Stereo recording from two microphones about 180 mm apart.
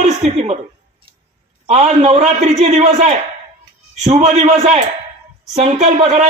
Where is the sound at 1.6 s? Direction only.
35° right (ahead or behind).